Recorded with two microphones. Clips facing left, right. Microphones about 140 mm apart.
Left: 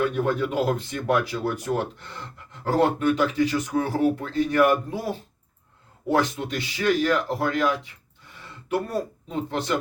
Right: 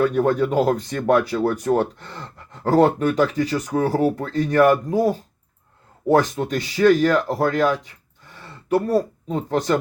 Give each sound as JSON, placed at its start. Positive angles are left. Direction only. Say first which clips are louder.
{"t": 0.0, "sound": "speech", "louder": "right 5 dB", "side_deg": -40}